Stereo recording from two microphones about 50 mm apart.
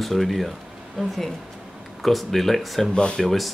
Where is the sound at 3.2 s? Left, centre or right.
Centre.